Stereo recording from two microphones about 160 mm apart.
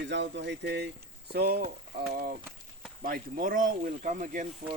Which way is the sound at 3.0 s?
60° right (ahead or behind).